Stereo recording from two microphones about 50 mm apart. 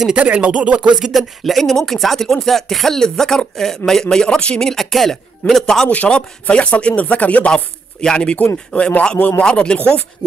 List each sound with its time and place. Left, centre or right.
0.1 s speech: right
0.9 s speech: centre; by 4.6 s left
4.6 s speech: centre
5.9 s speech: left